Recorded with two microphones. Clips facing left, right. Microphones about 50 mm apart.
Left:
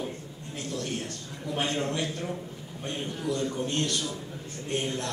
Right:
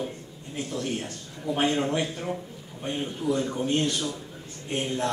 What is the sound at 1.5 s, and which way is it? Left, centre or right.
A man's voice, right.